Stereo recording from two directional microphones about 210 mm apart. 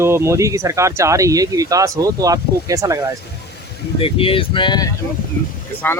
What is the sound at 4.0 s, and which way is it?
Speech, 25° left (ahead or behind).